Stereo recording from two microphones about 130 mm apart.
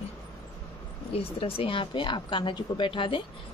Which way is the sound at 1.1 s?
45° left (ahead or behind).